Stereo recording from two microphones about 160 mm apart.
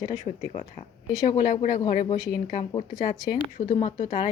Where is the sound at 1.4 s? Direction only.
55° left (ahead or behind).